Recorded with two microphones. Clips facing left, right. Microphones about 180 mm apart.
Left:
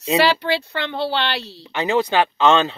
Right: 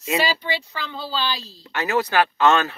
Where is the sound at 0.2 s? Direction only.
75° left (ahead or behind).